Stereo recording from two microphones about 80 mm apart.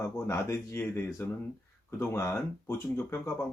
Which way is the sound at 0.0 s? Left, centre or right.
Left.